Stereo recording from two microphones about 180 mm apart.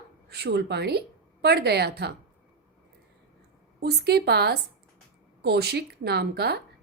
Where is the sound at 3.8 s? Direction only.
65° right (ahead or behind).